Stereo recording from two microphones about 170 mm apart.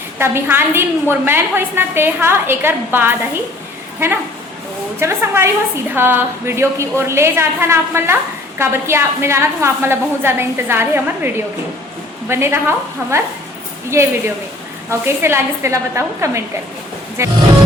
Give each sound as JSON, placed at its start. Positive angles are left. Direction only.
{"t": 0.2, "sound": "a woman's voice", "side_deg": -15}
{"t": 4.9, "sound": "a woman's voice", "side_deg": -15}